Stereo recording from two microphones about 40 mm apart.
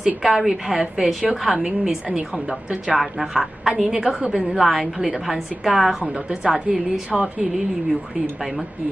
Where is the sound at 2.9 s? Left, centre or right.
Centre.